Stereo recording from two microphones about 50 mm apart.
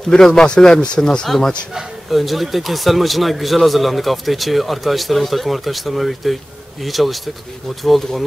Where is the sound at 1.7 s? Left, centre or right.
Centre.